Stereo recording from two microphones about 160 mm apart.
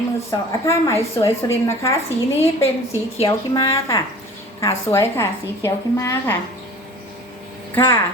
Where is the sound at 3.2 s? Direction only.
25° left (ahead or behind).